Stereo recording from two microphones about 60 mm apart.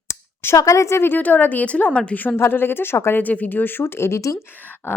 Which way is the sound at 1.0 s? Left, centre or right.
Left.